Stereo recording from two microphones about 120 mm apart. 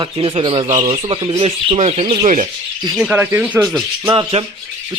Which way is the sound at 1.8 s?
60° right (ahead or behind).